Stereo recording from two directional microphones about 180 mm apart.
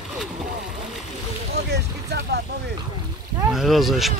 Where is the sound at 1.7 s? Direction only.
65° right (ahead or behind).